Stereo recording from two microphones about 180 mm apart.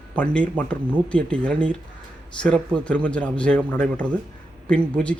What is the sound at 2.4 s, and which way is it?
Speech, 5° left (ahead or behind).